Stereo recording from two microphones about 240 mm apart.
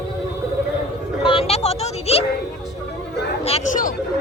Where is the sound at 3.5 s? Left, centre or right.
Left.